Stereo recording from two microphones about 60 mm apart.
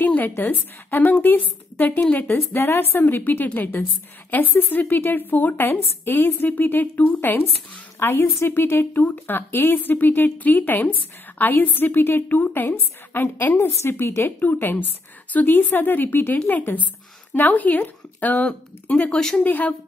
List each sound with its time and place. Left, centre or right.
0.0 s a sound: left
0.3 s speech: left
2.0 s speech: left
2.2 s speech: left
19.0 s speech: centre
19.4 s speech: left